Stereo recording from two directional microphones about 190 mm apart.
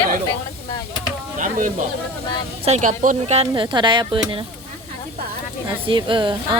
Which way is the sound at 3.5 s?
25° right (ahead or behind).